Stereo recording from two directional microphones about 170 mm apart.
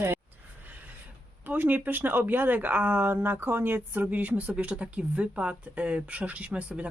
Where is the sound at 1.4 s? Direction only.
10° right (ahead or behind).